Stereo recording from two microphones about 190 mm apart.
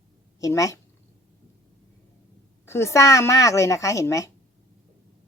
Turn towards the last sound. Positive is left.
turn(degrees=15)  # may be behind; listen again after turning